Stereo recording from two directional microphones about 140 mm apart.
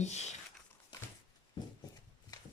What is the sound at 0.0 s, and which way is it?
Speech, 55° left (ahead or behind).